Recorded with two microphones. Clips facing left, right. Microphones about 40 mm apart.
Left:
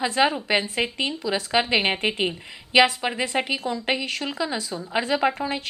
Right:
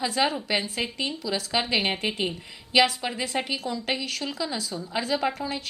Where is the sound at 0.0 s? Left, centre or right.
Left.